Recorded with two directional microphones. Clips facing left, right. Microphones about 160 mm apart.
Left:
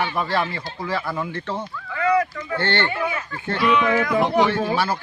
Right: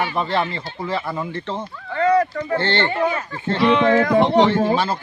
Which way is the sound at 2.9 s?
35° right (ahead or behind).